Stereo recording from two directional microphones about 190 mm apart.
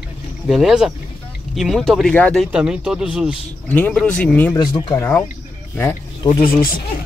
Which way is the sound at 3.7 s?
5° left (ahead or behind).